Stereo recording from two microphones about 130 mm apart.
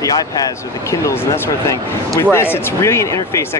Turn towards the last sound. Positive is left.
turn(degrees=20)  # may be behind; listen again after turning